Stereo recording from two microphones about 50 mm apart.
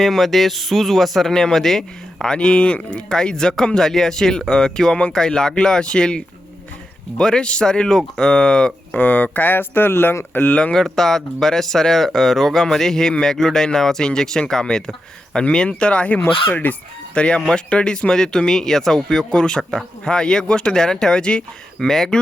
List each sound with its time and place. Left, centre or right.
0.0 s a man's voice: centre
9.0 s speech: left
9.5 s speech: left
10.5 s speech: left
10.8 s speech: centre; by 16.2 s left
16.6 s speech: left
17.2 s speech: left